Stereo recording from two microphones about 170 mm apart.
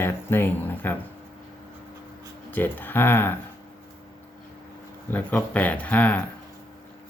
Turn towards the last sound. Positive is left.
turn(degrees=10)  # may be behind; listen again after turning